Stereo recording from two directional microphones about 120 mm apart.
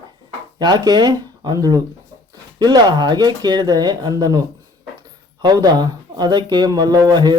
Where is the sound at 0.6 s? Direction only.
35° right (ahead or behind).